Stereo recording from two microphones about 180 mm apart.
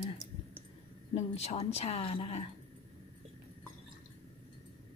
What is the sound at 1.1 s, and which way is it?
Speech, 35° left (ahead or behind).